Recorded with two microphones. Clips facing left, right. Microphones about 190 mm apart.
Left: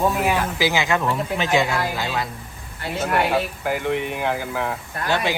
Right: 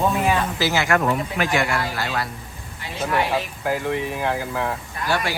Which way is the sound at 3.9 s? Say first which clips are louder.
Left 1 dB; 65° left (ahead or behind).